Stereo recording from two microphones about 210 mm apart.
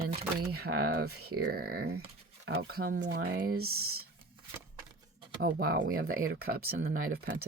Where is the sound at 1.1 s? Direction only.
90° right.